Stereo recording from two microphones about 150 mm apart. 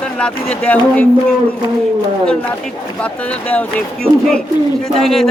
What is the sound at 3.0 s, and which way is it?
Speech, 10° left (ahead or behind).